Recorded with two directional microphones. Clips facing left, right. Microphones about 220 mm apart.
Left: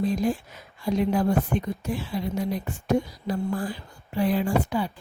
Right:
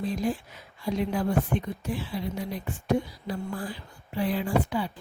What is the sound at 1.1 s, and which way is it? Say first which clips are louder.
Speech: left 3 dB; 45° left (ahead or behind).